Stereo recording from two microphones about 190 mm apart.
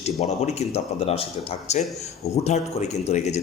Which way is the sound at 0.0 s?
35° left (ahead or behind).